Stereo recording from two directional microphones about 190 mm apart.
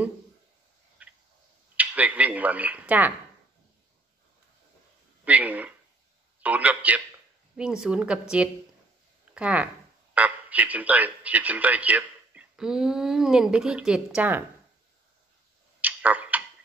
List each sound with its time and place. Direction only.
1.0 s a sound: 5° right (ahead or behind)
1.8 s a man's voice: 10° right (ahead or behind)
5.2 s a man's voice: 10° right (ahead or behind)
15.8 s tick-tock: 10° right (ahead or behind)